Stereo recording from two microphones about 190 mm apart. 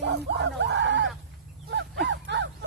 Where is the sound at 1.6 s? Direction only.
65° right (ahead or behind).